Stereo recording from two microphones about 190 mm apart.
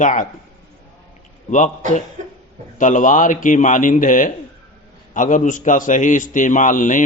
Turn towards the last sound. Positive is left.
turn(degrees=45)  # may be behind; listen again after turning